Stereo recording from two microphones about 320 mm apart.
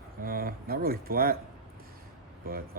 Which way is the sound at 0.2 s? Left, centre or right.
Right.